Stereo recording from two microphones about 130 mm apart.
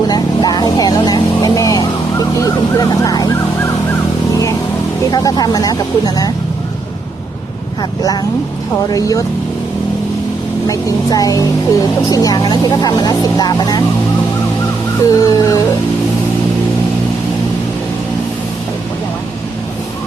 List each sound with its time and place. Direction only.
0.1 s vehicle: 30° left (ahead or behind)
5.1 s speech: 30° left (ahead or behind)
7.8 s speech: 30° left (ahead or behind)
10.7 s speech: 25° left (ahead or behind)
15.2 s speech: 30° left (ahead or behind)